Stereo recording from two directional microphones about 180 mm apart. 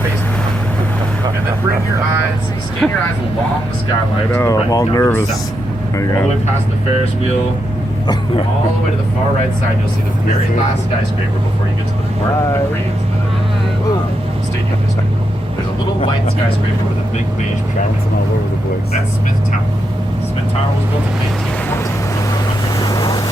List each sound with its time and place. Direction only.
2.8 s speech: centre (ahead or behind)
4.3 s speech: 15° left (ahead or behind)
22.8 s vehicle: 20° left (ahead or behind)